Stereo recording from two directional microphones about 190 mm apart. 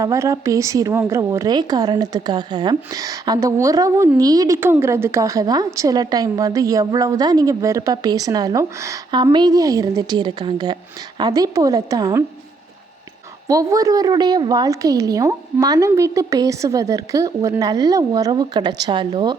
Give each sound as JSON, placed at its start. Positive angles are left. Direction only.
{"t": 0.0, "sound": "a woman's voice", "side_deg": -15}
{"t": 13.5, "sound": "a woman's voice", "side_deg": -15}